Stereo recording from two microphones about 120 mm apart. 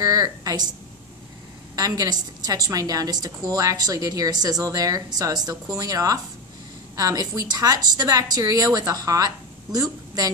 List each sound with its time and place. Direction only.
0.0 s a woman's voice: 30° right (ahead or behind)
1.8 s a woman's voice: 30° right (ahead or behind)